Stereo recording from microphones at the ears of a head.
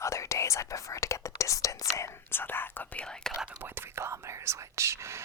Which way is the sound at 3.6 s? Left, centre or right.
Right.